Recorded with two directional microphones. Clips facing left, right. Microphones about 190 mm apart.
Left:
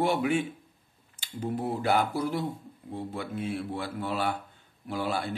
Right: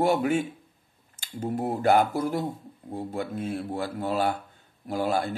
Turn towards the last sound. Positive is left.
turn(degrees=-45)  # may be behind; listen again after turning